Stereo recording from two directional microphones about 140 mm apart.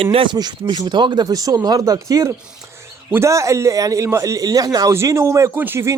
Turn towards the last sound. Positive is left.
turn(degrees=-20)  # may be behind; listen again after turning